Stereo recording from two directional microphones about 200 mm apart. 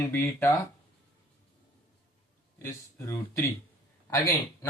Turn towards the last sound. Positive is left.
turn(degrees=15)  # may be behind; listen again after turning